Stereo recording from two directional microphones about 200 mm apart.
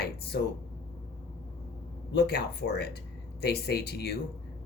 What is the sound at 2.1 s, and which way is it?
Speech, 55° left (ahead or behind).